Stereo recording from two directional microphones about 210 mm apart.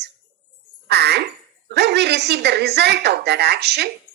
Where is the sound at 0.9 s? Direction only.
50° right (ahead or behind).